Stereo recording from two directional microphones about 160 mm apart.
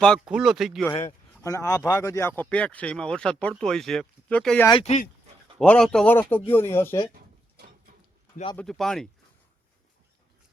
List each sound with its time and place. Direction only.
0.0 s speech: centre (ahead or behind)
1.3 s speech: 15° left (ahead or behind)
4.7 s speech: 40° left (ahead or behind)
5.5 s speech: 5° left (ahead or behind)
8.5 s speech: centre (ahead or behind)